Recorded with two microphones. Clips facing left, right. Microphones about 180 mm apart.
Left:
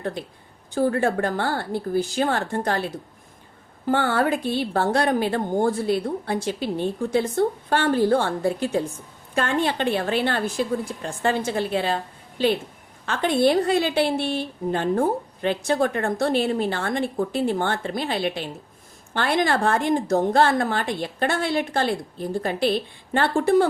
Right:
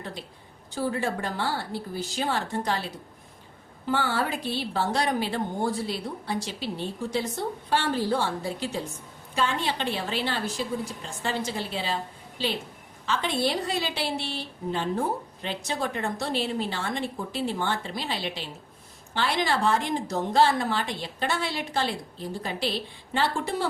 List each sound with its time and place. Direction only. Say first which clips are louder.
0.0 s a woman's voice: left 8 dB; 55° left (ahead or behind)